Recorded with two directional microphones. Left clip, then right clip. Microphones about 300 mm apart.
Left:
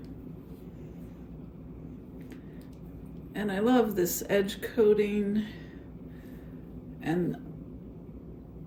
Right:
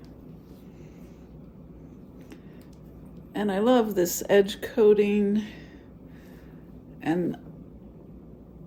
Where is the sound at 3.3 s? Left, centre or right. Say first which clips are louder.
Right 5 dB; right.